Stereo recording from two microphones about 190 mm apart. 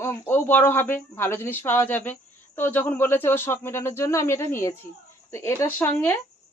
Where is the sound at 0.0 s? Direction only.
10° left (ahead or behind).